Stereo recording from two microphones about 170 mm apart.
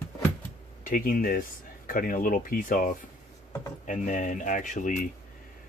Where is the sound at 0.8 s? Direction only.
55° left (ahead or behind).